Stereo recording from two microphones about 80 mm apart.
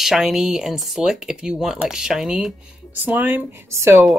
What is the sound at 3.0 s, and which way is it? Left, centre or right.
Speech, right.